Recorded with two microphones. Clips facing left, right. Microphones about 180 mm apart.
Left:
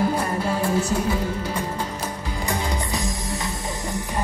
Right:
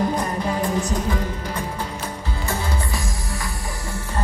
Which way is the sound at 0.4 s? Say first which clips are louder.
Even; 15° right (ahead or behind).